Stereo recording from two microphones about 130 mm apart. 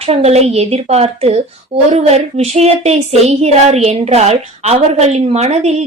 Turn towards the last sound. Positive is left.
turn(degrees=-60)  # may be behind; listen again after turning